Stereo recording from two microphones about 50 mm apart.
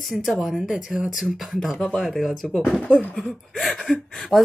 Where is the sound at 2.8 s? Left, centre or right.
Left.